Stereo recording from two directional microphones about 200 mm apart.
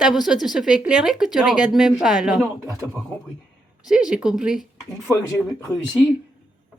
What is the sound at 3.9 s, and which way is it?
Speech, 5° right (ahead or behind).